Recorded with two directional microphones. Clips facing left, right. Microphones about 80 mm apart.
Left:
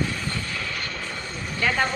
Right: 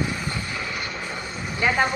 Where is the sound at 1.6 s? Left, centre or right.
Centre.